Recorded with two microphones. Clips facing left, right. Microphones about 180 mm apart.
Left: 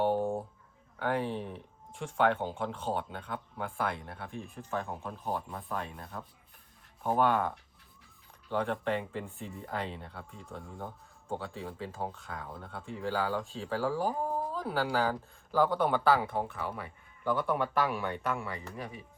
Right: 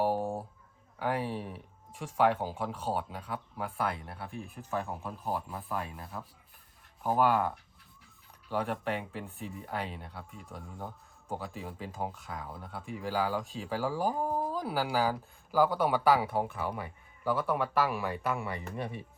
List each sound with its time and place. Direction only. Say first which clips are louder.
0.0 s a sound: left 1 dB; 5° right (ahead or behind)
0.9 s speech: left 1 dB; 5° right (ahead or behind)
17.2 s speech: even; 5° right (ahead or behind)
18.4 s speech: right 3 dB; 20° right (ahead or behind)